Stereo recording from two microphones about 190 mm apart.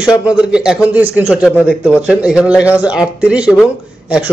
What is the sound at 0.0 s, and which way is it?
A man's voice, 5° right (ahead or behind).